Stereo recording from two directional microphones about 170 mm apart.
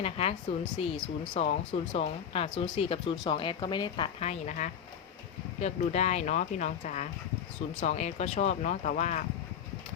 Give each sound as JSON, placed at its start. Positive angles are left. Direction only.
{"t": 0.0, "sound": "speech", "side_deg": 35}